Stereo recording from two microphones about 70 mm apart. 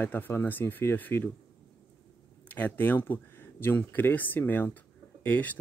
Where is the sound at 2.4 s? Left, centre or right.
Left.